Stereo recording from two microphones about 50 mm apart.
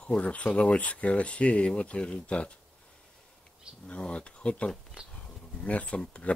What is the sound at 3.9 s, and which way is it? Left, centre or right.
Speech, left.